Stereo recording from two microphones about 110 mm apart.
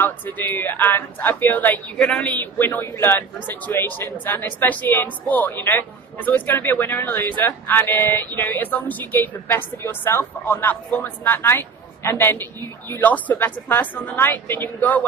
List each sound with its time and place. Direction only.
0.0 s a woman's voice: 15° left (ahead or behind)
2.6 s a woman's voice: 20° left (ahead or behind)